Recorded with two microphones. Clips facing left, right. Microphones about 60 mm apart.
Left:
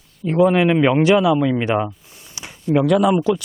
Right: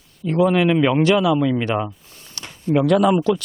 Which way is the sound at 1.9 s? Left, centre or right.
Centre.